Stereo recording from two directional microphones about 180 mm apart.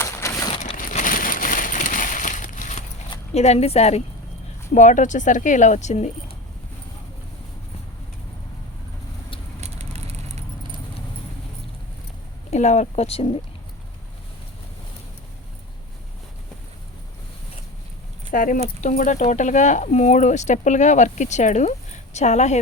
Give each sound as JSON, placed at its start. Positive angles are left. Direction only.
{"t": 0.0, "sound": "a sound", "side_deg": 15}
{"t": 0.6, "sound": "a sound", "side_deg": 45}
{"t": 3.1, "sound": "speech", "side_deg": 35}
{"t": 9.6, "sound": "vehicle", "side_deg": -35}
{"t": 12.5, "sound": "speech", "side_deg": 40}
{"t": 18.3, "sound": "speech", "side_deg": 45}